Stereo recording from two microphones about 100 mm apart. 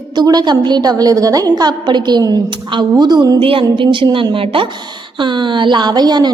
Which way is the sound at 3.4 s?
65° right (ahead or behind).